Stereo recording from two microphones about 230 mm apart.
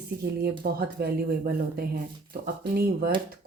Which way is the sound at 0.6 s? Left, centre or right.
Right.